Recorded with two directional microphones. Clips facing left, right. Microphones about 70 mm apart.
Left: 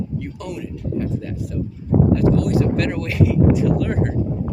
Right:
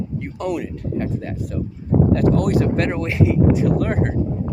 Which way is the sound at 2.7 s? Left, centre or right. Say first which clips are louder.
Right 1 dB; right.